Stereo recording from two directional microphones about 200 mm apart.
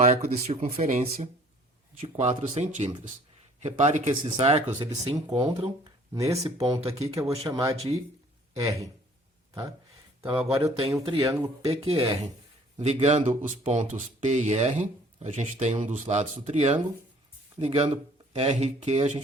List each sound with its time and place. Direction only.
0.0 s speech: 30° right (ahead or behind)
4.9 s speech: 20° right (ahead or behind)
10.2 s speech: 15° right (ahead or behind)
11.7 s speech: 30° right (ahead or behind)